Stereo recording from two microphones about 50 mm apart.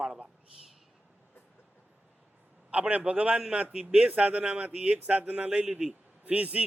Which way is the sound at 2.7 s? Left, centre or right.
Right.